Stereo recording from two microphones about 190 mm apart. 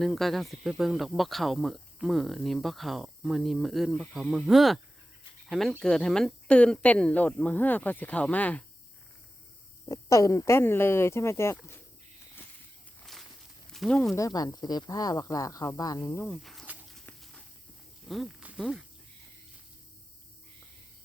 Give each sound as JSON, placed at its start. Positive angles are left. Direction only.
{"t": 0.0, "sound": "speech", "side_deg": 0}
{"t": 9.9, "sound": "speech", "side_deg": 15}
{"t": 13.7, "sound": "speech", "side_deg": 0}
{"t": 14.2, "sound": "speech", "side_deg": 20}
{"t": 16.2, "sound": "snake", "side_deg": 0}
{"t": 18.1, "sound": "speech", "side_deg": 0}